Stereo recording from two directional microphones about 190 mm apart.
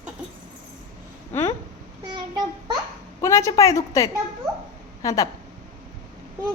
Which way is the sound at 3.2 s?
15° left (ahead or behind).